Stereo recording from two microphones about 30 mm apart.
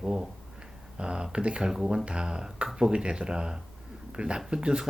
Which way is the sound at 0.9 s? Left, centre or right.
Right.